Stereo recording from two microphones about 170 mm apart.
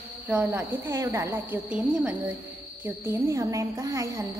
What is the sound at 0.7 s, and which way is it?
Speech, 20° right (ahead or behind).